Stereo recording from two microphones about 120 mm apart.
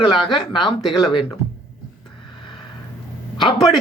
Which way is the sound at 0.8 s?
Centre (ahead or behind).